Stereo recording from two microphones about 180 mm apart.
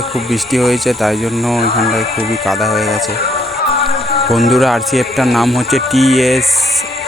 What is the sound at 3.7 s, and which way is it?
Music, 35° left (ahead or behind).